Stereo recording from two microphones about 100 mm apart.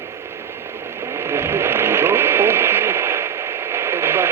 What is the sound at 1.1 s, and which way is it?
Radio, 25° right (ahead or behind).